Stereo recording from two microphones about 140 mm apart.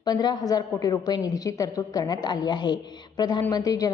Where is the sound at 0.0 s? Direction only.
30° left (ahead or behind).